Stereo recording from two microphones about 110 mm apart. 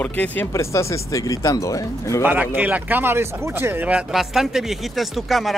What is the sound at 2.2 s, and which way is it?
Speech, 15° right (ahead or behind).